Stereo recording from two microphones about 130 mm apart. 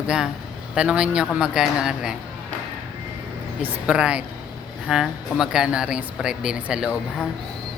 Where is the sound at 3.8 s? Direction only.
10° right (ahead or behind).